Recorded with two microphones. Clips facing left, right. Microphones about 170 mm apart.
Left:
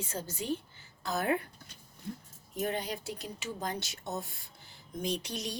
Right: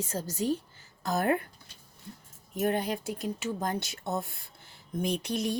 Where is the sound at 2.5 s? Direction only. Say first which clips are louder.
Right 5 dB; 50° right (ahead or behind).